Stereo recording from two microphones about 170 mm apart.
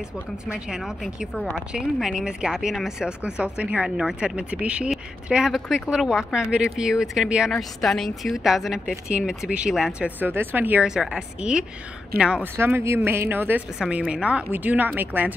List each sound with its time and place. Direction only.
0.5 s a woman's voice: 5° right (ahead or behind)
12.1 s speech: 65° right (ahead or behind)
12.5 s a woman's voice: 15° right (ahead or behind)